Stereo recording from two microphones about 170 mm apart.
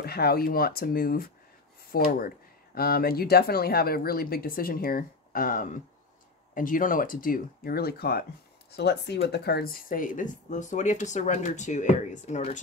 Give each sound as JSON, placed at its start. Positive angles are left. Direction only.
{"t": 0.0, "sound": "speech", "side_deg": 65}
{"t": 8.7, "sound": "speech", "side_deg": 75}